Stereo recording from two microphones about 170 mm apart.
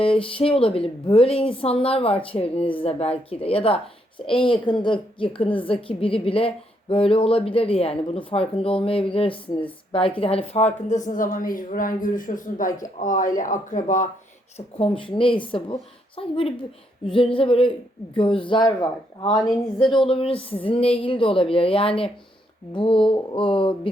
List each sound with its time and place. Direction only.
0.0 s a woman's voice: 30° left (ahead or behind); by 14.1 s 50° left (ahead or behind)
14.8 s a woman's voice: 30° left (ahead or behind)
19.9 s a woman's voice: 30° left (ahead or behind)